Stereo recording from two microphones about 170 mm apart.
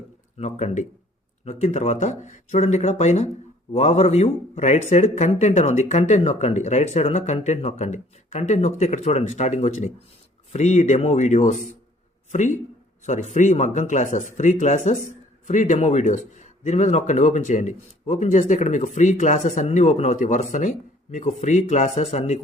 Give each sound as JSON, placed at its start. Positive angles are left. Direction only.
{"t": 0.3, "sound": "a man's voice", "side_deg": 40}